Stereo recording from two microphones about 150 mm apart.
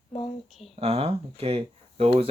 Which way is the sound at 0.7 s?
45° right (ahead or behind).